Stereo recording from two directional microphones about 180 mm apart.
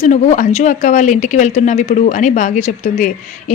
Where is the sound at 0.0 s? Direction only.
45° left (ahead or behind).